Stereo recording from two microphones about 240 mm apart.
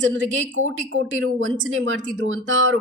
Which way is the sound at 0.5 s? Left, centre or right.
Right.